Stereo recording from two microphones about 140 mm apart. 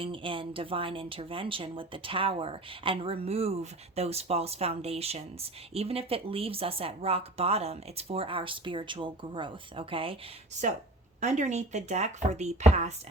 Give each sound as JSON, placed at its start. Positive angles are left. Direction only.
{"t": 0.0, "sound": "speech", "side_deg": -40}
{"t": 11.2, "sound": "speech", "side_deg": -60}